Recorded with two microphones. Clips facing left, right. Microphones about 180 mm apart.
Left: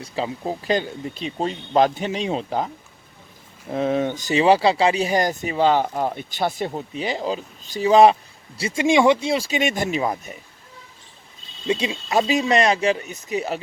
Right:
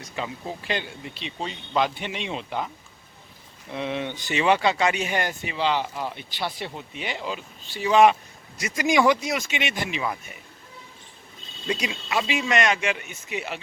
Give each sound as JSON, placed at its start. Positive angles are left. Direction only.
{"t": 0.0, "sound": "speech", "side_deg": 35}
{"t": 3.7, "sound": "speech", "side_deg": 40}
{"t": 11.7, "sound": "speech", "side_deg": 25}
{"t": 12.0, "sound": "speech", "side_deg": 40}